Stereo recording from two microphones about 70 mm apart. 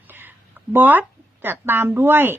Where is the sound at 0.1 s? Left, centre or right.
Right.